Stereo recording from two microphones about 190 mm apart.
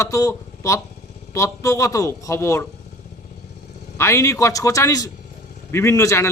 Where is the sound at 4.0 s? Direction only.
15° left (ahead or behind).